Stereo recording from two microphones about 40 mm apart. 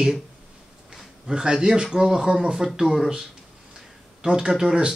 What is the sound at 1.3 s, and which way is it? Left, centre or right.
Speech, centre.